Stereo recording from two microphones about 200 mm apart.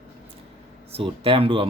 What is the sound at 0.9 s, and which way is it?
Speech, 30° right (ahead or behind).